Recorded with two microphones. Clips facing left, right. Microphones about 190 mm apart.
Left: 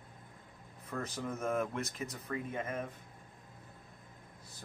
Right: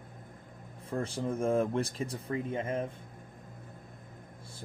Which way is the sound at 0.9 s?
30° right (ahead or behind).